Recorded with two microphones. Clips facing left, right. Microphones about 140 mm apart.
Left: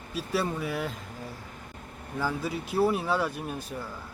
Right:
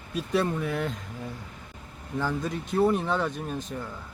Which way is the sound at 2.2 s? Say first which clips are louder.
Right 1 dB; 5° left (ahead or behind).